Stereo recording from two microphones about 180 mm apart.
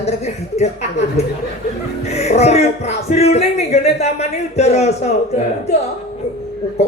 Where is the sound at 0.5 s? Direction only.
40° left (ahead or behind).